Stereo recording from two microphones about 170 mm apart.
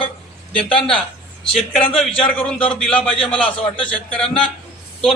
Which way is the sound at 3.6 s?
30° left (ahead or behind).